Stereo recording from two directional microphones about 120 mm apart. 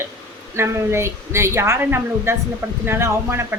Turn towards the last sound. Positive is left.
turn(degrees=-20)  # may be behind; listen again after turning